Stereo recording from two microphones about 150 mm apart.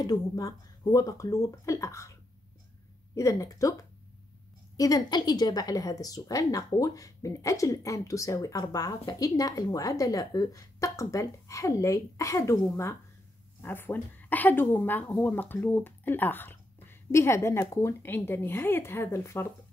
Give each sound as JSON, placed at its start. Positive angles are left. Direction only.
{"t": 0.0, "sound": "speech", "side_deg": 25}
{"t": 3.2, "sound": "speech", "side_deg": 20}
{"t": 4.7, "sound": "speech", "side_deg": 25}
{"t": 13.6, "sound": "speech", "side_deg": 15}